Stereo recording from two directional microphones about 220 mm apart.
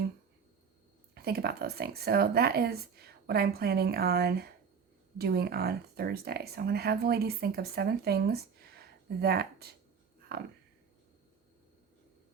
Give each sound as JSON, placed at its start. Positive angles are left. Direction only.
{"t": 1.1, "sound": "speech", "side_deg": -45}